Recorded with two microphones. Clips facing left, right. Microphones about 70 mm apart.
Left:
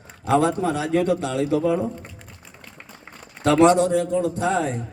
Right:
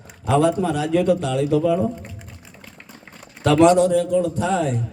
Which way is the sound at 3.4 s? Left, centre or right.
Left.